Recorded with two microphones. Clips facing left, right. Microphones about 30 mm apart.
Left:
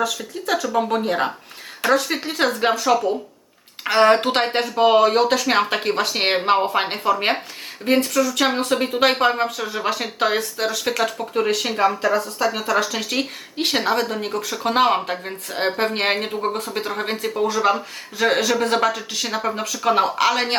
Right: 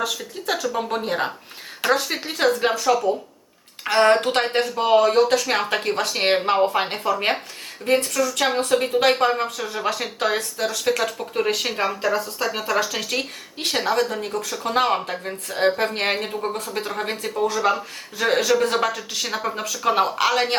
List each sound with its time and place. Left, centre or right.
0.6 s speech: centre
13.0 s speech: centre
14.2 s speech: left; by 20.6 s centre